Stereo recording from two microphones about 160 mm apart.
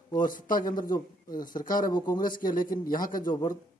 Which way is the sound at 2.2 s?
60° left (ahead or behind).